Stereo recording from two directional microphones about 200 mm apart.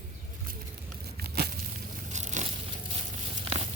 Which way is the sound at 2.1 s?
35° right (ahead or behind).